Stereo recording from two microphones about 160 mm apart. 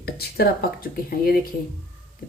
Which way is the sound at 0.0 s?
80° left.